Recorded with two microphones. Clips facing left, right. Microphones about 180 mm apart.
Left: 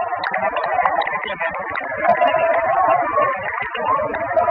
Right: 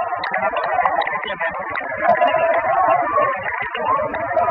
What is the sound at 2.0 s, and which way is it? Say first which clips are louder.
Music: even; centre (ahead or behind).